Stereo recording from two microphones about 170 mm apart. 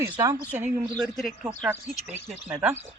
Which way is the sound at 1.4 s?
15° right (ahead or behind).